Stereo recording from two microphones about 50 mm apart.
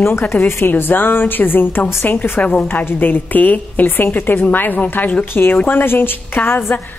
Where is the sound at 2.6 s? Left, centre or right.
Left.